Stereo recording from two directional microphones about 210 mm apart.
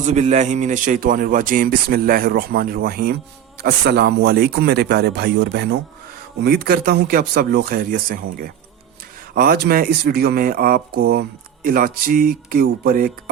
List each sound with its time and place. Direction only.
0.0 s speech: 35° right (ahead or behind)